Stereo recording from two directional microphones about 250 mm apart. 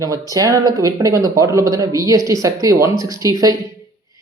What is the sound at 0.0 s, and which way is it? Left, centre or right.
Speech, centre.